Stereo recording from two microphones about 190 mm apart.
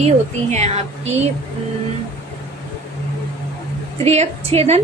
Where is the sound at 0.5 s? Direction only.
35° right (ahead or behind).